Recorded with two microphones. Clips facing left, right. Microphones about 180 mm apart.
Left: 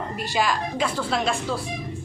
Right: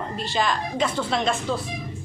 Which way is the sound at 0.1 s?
15° left (ahead or behind).